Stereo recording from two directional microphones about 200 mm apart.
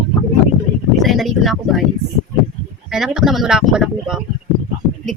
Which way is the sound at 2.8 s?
Centre (ahead or behind).